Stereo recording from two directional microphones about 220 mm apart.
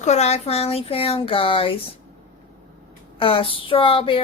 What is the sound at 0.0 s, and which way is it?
Speech, 30° left (ahead or behind).